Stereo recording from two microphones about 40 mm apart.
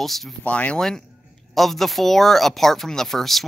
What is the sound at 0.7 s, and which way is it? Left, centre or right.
Speech, centre.